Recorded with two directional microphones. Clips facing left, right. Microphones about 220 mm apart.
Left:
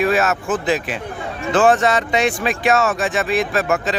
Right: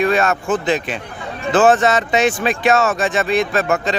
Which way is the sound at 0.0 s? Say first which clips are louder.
Right 1 dB; 5° left (ahead or behind).